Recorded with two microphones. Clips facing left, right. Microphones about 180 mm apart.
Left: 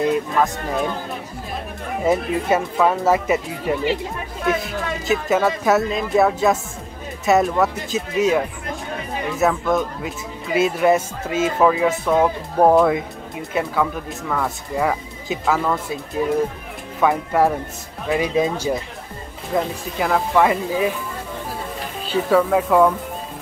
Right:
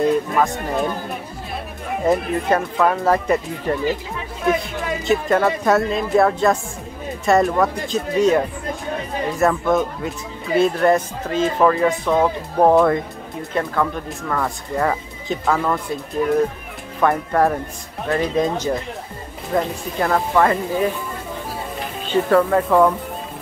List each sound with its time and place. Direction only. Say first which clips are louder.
2.0 s speech: even; 5° left (ahead or behind)
5.0 s speech: right 1 dB; centre (ahead or behind)
22.1 s speech: right 1 dB; 5° left (ahead or behind)